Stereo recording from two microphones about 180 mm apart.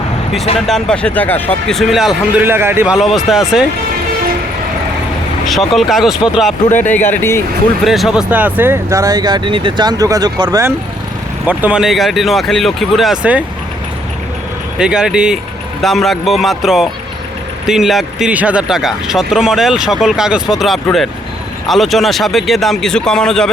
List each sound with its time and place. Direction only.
0.7 s speech: 5° left (ahead or behind)
5.5 s speech: centre (ahead or behind)
6.8 s speech: 10° left (ahead or behind)
7.9 s speech: centre (ahead or behind)
14.8 s speech: 5° right (ahead or behind)